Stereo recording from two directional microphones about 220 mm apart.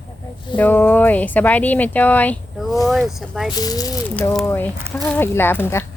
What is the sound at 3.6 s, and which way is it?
Speech, 15° left (ahead or behind).